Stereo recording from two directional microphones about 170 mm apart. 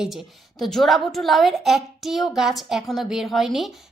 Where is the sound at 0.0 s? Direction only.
Centre (ahead or behind).